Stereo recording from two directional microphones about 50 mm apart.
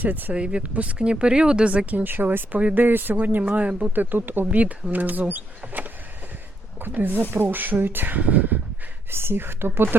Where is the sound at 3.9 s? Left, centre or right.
Right.